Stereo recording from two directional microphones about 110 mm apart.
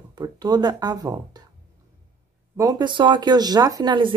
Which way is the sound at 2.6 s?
35° right (ahead or behind).